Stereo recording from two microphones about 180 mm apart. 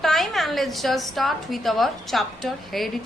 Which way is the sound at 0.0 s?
Centre (ahead or behind).